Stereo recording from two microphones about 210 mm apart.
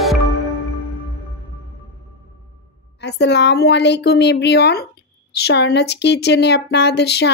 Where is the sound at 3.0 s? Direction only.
55° left (ahead or behind).